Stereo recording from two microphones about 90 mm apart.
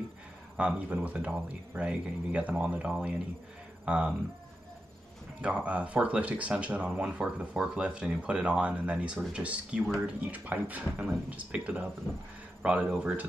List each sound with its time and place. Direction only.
0.6 s speech: 15° right (ahead or behind)
5.4 s speech: 15° right (ahead or behind)